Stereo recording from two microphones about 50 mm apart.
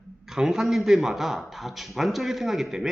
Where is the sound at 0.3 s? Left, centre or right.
Centre.